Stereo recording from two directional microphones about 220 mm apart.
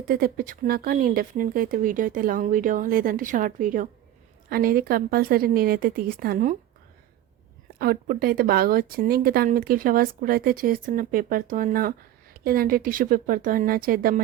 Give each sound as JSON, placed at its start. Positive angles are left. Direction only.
{"t": 0.1, "sound": "speech", "side_deg": -40}
{"t": 7.8, "sound": "speech", "side_deg": -45}